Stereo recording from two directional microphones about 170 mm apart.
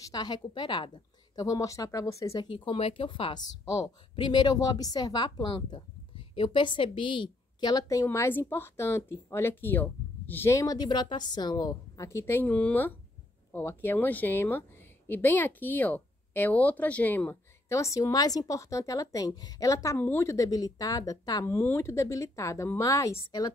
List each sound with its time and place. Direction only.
0.1 s a woman's voice: 25° left (ahead or behind)